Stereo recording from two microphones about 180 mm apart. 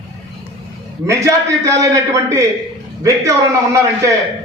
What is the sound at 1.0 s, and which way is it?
A man's voice, 15° right (ahead or behind).